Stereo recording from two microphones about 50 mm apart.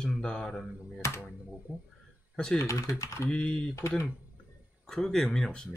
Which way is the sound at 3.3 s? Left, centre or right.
Left.